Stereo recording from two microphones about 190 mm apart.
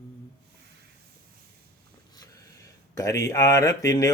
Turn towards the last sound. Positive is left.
turn(degrees=15)  # may be behind; listen again after turning